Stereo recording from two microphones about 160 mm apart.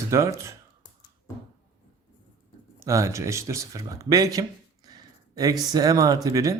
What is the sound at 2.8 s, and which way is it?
Speech, 20° right (ahead or behind).